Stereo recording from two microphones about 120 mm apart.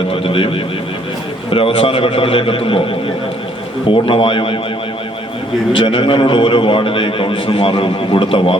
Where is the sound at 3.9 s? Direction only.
45° left (ahead or behind).